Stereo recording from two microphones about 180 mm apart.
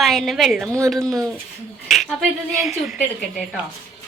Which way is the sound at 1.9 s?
Centre (ahead or behind).